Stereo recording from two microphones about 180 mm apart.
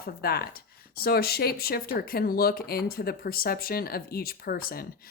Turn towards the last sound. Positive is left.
turn(degrees=55)  # may be behind; listen again after turning